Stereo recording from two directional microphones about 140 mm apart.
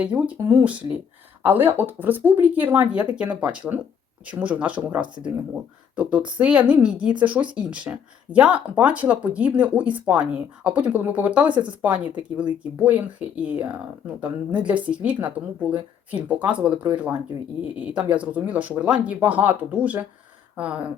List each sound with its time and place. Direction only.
0.0 s speech: 10° right (ahead or behind)
11.5 s speech: 35° right (ahead or behind)
11.8 s speech: 10° right (ahead or behind)
16.4 s speech: 10° right (ahead or behind)